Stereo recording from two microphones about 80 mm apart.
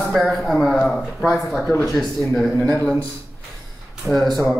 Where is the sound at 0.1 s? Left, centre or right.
Centre.